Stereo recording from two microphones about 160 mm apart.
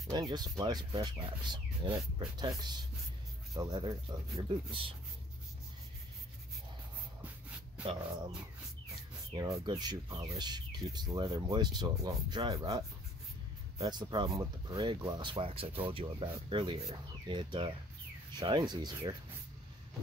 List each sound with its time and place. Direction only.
0.1 s speech: 25° right (ahead or behind)
3.5 s speech: 25° right (ahead or behind)
9.3 s speech: 25° right (ahead or behind)